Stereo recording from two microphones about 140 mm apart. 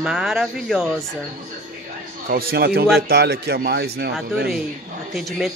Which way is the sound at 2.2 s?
90° right.